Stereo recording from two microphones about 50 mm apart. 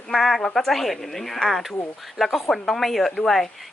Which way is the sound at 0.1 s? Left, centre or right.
Centre.